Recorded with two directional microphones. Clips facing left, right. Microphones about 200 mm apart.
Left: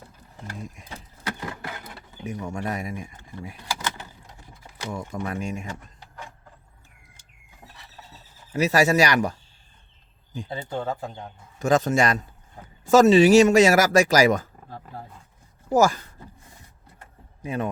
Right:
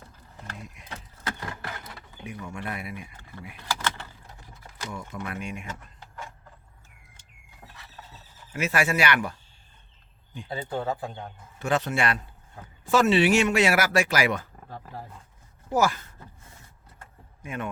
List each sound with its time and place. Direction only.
2.4 s speech: 45° left (ahead or behind)
3.8 s vehicle: 10° left (ahead or behind)
4.9 s speech: 35° left (ahead or behind)
8.5 s speech: 40° left (ahead or behind)
10.5 s speech: 5° right (ahead or behind)
11.6 s speech: 45° left (ahead or behind)
15.7 s speech: 45° left (ahead or behind)
17.4 s a man's voice: 35° left (ahead or behind)